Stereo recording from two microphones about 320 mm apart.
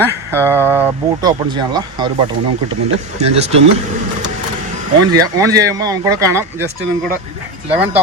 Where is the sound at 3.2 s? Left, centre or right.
Centre.